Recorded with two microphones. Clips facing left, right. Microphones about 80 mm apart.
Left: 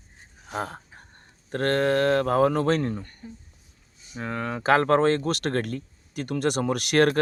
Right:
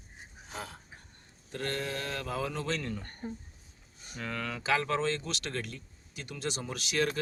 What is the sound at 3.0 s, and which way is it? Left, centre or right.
Speech, right.